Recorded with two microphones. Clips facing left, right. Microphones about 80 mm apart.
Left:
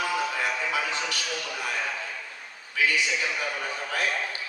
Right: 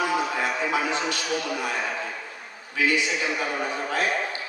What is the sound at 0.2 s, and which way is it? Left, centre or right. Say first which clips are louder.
A man's voice: right 2 dB; right.